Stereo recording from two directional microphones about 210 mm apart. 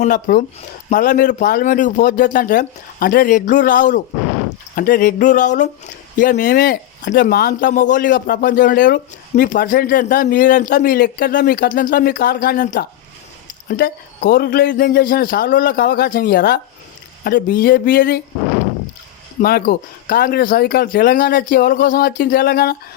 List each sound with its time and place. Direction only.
0.0 s speech: 40° left (ahead or behind)
19.4 s speech: 45° left (ahead or behind)